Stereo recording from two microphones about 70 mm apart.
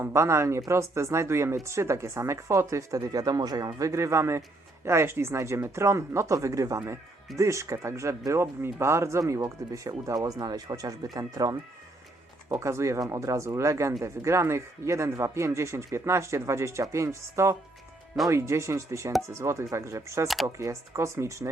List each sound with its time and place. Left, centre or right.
0.0 s a man's voice: right
3.1 s speech: right
3.8 s speech: right
12.5 s a man's voice: right
20.2 s speech: centre
20.6 s speech: right